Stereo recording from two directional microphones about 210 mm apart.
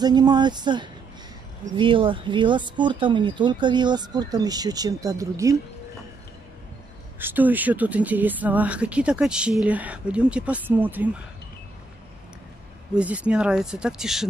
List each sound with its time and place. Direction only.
0.0 s speech: 20° right (ahead or behind)
7.2 s speech: 10° right (ahead or behind)
12.9 s speech: 5° right (ahead or behind)